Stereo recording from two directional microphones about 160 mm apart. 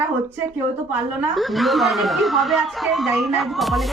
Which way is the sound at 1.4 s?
Centre (ahead or behind).